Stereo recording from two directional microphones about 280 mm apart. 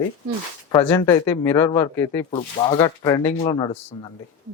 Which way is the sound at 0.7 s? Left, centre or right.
Centre.